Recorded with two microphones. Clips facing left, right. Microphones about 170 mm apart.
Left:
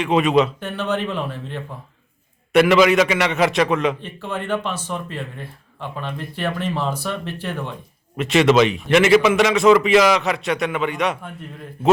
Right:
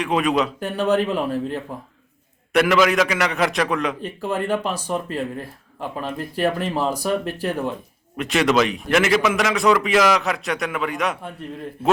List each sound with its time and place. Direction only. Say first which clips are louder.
0.0 s a man's voice: left 3 dB; centre (ahead or behind)
0.6 s speech: right 4 dB; 35° right (ahead or behind)
2.5 s a man's voice: left 3 dB; centre (ahead or behind)
4.0 s speech: right 4 dB; 35° right (ahead or behind)
8.1 s a man's voice: left 4 dB; centre (ahead or behind)